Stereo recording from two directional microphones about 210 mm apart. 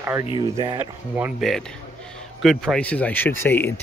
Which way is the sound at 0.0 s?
10° right (ahead or behind).